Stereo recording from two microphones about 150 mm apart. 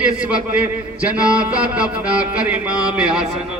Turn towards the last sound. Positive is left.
turn(degrees=-5)  # may be behind; listen again after turning